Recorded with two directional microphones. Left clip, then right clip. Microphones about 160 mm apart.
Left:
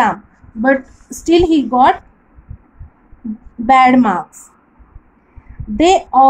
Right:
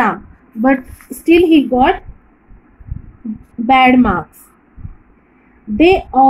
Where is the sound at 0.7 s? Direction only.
75° left (ahead or behind).